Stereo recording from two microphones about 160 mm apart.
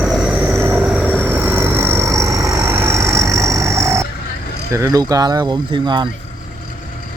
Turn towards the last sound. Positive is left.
turn(degrees=-30)  # may be behind; listen again after turning